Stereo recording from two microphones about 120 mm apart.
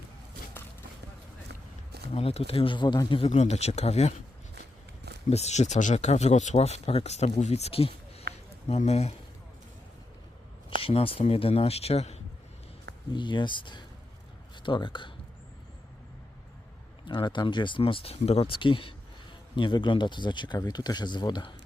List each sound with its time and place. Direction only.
2.1 s speech: 55° left (ahead or behind)
3.2 s speech: 65° left (ahead or behind)
5.3 s speech: 65° left (ahead or behind)
8.6 s speech: 65° left (ahead or behind)
10.8 s speech: 50° left (ahead or behind)
13.1 s speech: 40° left (ahead or behind)
17.1 s speech: 40° left (ahead or behind)